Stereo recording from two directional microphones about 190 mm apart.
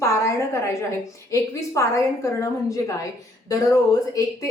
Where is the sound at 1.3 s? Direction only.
15° left (ahead or behind).